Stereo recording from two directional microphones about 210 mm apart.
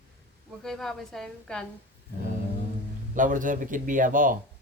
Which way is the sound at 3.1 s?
40° right (ahead or behind).